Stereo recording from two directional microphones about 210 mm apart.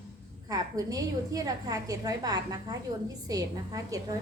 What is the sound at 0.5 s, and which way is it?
A woman's voice, 15° right (ahead or behind).